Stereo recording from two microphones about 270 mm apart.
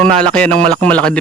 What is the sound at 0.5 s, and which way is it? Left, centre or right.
Speech, right.